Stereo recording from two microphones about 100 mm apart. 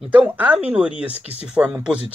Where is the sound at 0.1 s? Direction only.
15° right (ahead or behind).